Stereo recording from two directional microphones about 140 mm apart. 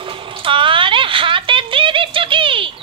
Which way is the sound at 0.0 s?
40° right (ahead or behind).